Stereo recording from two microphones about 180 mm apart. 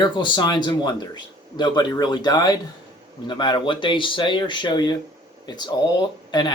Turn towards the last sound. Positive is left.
turn(degrees=25)  # may be behind; listen again after turning